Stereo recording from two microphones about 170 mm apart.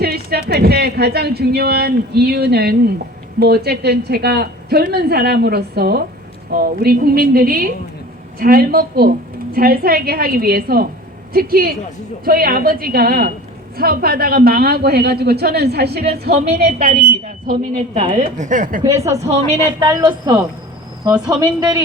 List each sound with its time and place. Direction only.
0.0 s a woman's voice: 65° right (ahead or behind); by 18.8 s 50° right (ahead or behind)
19.2 s a woman's voice: 40° right (ahead or behind)
19.9 s a woman's voice: 20° right (ahead or behind)